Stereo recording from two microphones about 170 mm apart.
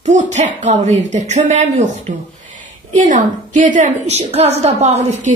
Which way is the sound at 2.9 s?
45° right (ahead or behind).